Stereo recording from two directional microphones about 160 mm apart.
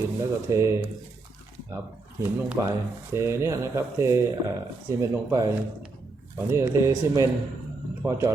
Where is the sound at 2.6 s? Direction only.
20° right (ahead or behind).